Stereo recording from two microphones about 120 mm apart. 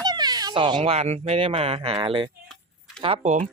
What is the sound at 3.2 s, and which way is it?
Speech, 85° right.